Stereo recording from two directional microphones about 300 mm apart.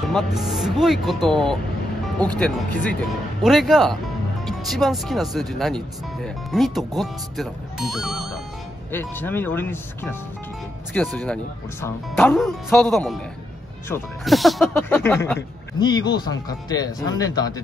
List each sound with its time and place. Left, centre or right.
0.1 s speech: centre